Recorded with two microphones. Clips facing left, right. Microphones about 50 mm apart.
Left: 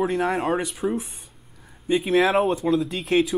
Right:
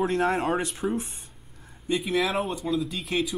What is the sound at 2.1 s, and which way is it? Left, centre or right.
Speech, left.